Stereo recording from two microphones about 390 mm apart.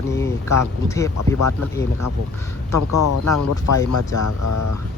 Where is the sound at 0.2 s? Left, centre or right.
Centre.